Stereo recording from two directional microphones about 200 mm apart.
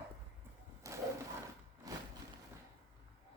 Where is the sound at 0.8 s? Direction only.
15° right (ahead or behind).